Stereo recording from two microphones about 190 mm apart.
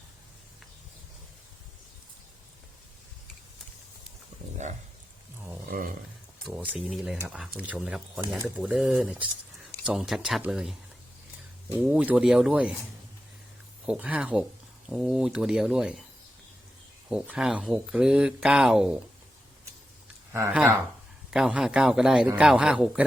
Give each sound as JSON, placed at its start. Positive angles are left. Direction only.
{"t": 6.5, "sound": "speech", "side_deg": -5}
{"t": 11.8, "sound": "speech", "side_deg": -5}
{"t": 13.8, "sound": "speech", "side_deg": -5}
{"t": 17.1, "sound": "speech", "side_deg": -5}
{"t": 20.3, "sound": "speech", "side_deg": -10}